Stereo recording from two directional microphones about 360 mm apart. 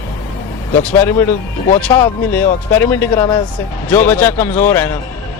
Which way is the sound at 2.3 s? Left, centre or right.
Centre.